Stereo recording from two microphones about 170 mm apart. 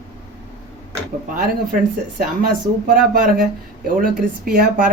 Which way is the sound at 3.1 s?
55° right (ahead or behind).